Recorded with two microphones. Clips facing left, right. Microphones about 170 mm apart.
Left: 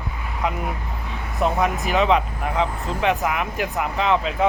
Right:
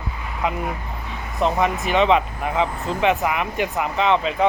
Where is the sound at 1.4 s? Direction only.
Centre (ahead or behind).